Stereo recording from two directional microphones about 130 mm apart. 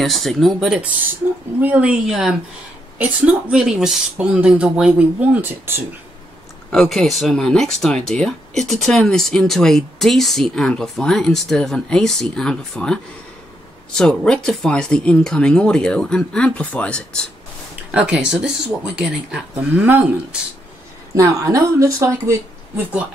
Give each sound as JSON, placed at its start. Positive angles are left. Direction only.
{"t": 0.0, "sound": "speech", "side_deg": 0}
{"t": 6.7, "sound": "speech", "side_deg": 5}
{"t": 17.9, "sound": "speech", "side_deg": -5}
{"t": 21.1, "sound": "a woman's voice", "side_deg": -25}